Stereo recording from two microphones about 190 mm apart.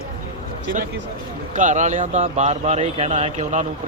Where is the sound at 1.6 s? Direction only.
40° right (ahead or behind).